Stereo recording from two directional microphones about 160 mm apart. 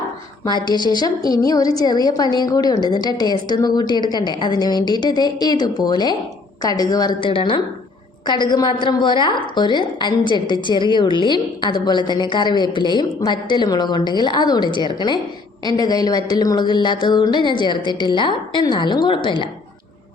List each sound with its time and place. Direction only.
0.4 s a woman's voice: 25° left (ahead or behind)